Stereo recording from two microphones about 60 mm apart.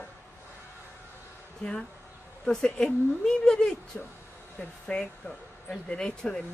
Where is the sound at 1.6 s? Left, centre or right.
Centre.